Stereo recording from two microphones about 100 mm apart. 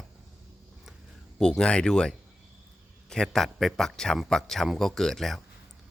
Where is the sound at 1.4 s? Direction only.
10° left (ahead or behind).